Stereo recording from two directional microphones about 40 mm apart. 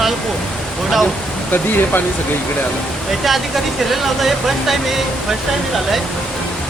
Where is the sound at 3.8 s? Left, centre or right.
Centre.